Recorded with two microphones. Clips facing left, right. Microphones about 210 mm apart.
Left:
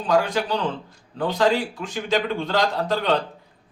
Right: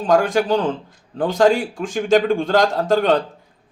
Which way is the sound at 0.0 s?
50° right (ahead or behind).